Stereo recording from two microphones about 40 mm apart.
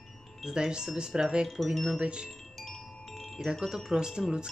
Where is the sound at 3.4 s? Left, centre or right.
Centre.